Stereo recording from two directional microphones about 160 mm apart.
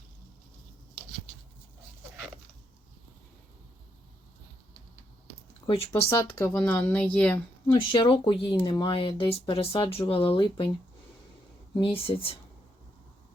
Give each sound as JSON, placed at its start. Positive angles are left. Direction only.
{"t": 5.6, "sound": "speech", "side_deg": 35}
{"t": 6.3, "sound": "speech", "side_deg": 10}
{"t": 7.7, "sound": "speech", "side_deg": 30}
{"t": 11.8, "sound": "speech", "side_deg": 35}